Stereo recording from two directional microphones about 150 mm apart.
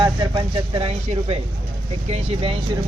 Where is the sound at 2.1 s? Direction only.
40° right (ahead or behind).